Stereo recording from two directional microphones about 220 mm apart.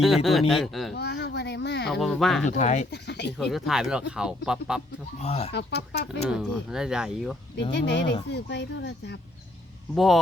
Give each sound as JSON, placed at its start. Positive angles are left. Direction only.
{"t": 0.3, "sound": "speech", "side_deg": 0}
{"t": 0.9, "sound": "a sound", "side_deg": 50}
{"t": 1.9, "sound": "speech", "side_deg": 0}
{"t": 2.5, "sound": "speech", "side_deg": 30}
{"t": 2.9, "sound": "speech", "side_deg": 50}
{"t": 3.3, "sound": "speech", "side_deg": 0}
{"t": 5.2, "sound": "speech", "side_deg": 30}
{"t": 5.5, "sound": "speech", "side_deg": 50}
{"t": 6.2, "sound": "speech", "side_deg": 0}
{"t": 7.7, "sound": "speech", "side_deg": 50}
{"t": 9.9, "sound": "speech", "side_deg": 0}